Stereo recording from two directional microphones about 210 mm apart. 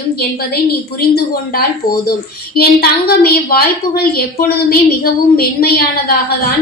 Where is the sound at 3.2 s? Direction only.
45° left (ahead or behind).